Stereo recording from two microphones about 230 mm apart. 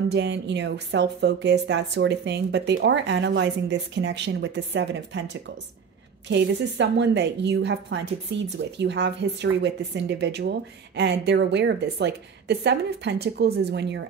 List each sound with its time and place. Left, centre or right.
0.1 s a woman's voice: right